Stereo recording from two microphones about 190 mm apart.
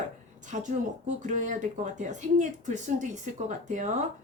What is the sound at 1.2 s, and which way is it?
A woman's voice, 40° right (ahead or behind).